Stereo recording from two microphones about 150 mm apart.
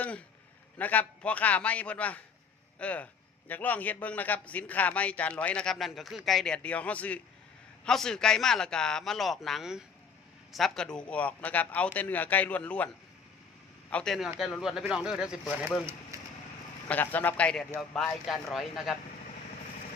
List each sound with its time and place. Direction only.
0.0 s a sound: 10° left (ahead or behind)
0.8 s a man's voice: 10° left (ahead or behind)
13.9 s a man's voice: 5° left (ahead or behind)
16.1 s wood: 20° right (ahead or behind)
16.9 s a man's voice: 10° left (ahead or behind)